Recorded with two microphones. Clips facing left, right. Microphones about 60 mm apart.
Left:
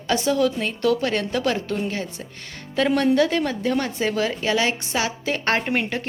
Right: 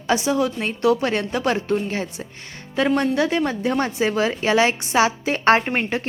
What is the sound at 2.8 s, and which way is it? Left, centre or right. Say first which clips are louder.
Speech: left 1 dB; centre.